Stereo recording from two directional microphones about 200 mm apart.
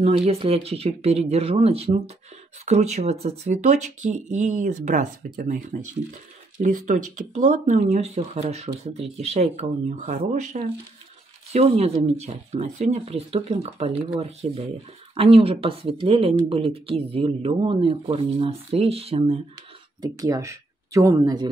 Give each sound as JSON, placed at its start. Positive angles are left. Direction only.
{"t": 0.0, "sound": "speech", "side_deg": -30}
{"t": 6.6, "sound": "speech", "side_deg": -40}
{"t": 20.0, "sound": "speech", "side_deg": -15}